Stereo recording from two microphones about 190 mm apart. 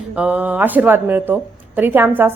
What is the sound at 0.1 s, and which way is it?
A woman's voice, 10° right (ahead or behind).